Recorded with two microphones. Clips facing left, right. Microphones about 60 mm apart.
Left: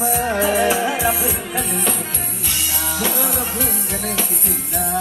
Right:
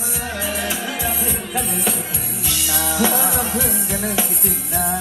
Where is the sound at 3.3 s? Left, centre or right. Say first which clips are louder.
Right 2 dB; left.